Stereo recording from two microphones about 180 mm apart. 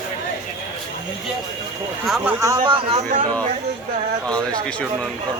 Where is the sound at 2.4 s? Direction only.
20° right (ahead or behind).